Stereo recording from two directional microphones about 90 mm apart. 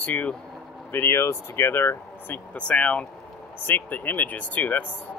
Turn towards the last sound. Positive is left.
turn(degrees=15)  # may be behind; listen again after turning